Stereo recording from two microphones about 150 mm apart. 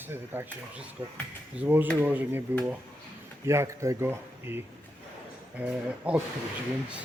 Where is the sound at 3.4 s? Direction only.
20° right (ahead or behind).